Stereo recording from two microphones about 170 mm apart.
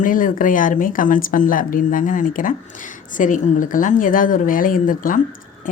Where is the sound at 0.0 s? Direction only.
50° left (ahead or behind).